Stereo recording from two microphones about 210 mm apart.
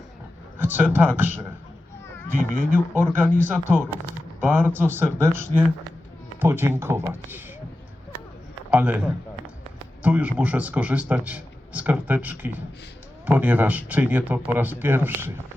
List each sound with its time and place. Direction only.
0.6 s a sound: 10° right (ahead or behind)
0.9 s a man's voice: 10° right (ahead or behind)
2.4 s speech: 40° right (ahead or behind)
2.7 s a man's voice: 10° right (ahead or behind)
8.7 s a man's voice: 5° right (ahead or behind)